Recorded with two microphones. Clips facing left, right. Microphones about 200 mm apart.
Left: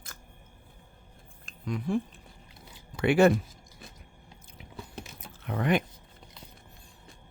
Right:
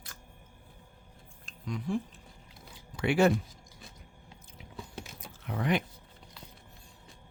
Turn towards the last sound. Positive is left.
turn(degrees=55)  # may be behind; listen again after turning